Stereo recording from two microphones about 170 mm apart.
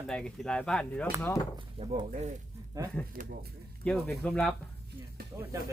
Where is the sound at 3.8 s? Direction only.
5° left (ahead or behind).